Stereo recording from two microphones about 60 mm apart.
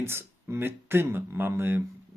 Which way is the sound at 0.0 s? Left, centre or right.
Right.